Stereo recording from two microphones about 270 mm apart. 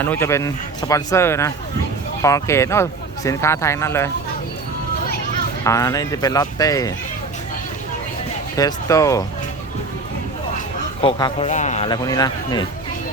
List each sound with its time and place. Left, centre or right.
0.0 s speech: centre
5.6 s speech: centre
8.5 s speech: centre
11.0 s speech: centre